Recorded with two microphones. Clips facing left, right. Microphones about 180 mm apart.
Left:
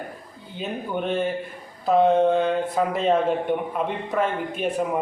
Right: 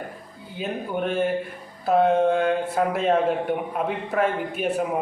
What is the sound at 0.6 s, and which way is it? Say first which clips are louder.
A man's voice: right 1 dB; 10° right (ahead or behind).